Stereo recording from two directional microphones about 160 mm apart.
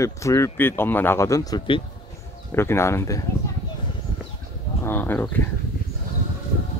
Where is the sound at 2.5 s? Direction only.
15° left (ahead or behind).